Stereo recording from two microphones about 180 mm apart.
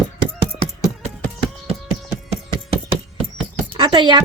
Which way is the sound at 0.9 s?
40° right (ahead or behind).